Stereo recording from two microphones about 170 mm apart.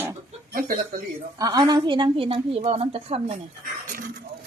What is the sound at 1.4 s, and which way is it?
A woman's voice, 20° right (ahead or behind).